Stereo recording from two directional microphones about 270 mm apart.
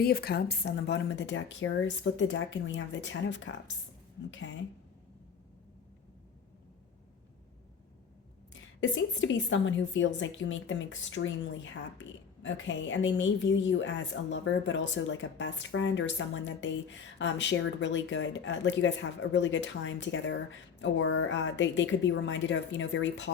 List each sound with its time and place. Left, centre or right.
0.0 s a woman's voice: left
8.8 s a woman's voice: left